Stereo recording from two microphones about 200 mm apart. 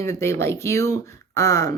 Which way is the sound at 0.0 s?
15° left (ahead or behind).